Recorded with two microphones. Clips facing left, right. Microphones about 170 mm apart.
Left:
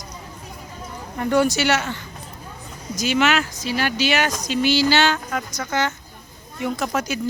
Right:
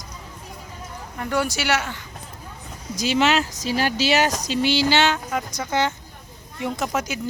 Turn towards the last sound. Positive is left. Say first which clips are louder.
# left 2 dB
turn(degrees=-20)  # may be behind; listen again after turning